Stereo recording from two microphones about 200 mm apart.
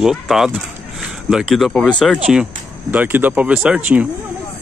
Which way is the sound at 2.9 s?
10° right (ahead or behind).